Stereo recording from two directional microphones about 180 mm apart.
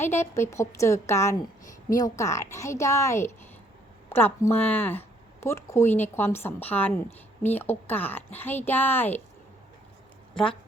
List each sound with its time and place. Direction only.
0.0 s speech: 15° left (ahead or behind)
10.3 s speech: 5° left (ahead or behind)